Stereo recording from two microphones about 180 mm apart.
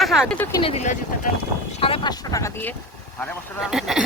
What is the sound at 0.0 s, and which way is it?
Speech, centre (ahead or behind).